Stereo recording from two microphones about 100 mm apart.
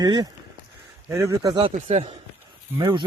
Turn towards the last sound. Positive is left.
turn(degrees=-50)  # may be behind; listen again after turning